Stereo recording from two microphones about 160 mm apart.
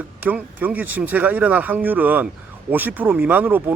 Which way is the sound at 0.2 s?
10° right (ahead or behind).